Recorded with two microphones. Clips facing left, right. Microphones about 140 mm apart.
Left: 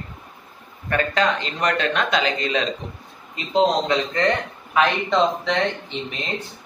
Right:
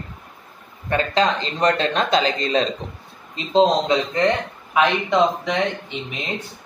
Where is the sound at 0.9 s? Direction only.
30° right (ahead or behind).